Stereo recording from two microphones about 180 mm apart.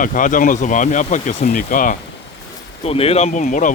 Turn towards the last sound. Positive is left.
turn(degrees=45)  # may be behind; listen again after turning